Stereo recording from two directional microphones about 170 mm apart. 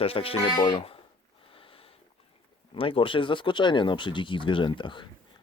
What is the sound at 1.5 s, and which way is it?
Sniff, 30° left (ahead or behind).